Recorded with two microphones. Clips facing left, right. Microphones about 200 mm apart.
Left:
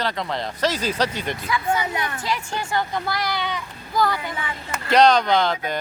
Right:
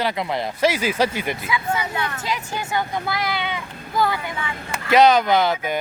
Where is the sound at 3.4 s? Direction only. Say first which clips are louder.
Even; 20° right (ahead or behind).